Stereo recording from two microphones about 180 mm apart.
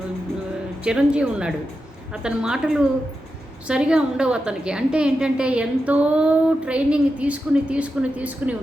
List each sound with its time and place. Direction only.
0.9 s a woman's voice: 5° right (ahead or behind)